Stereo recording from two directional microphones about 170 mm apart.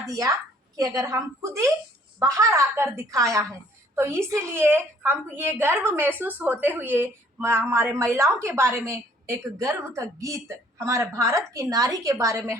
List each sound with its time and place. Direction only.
0.8 s a woman's voice: 20° right (ahead or behind)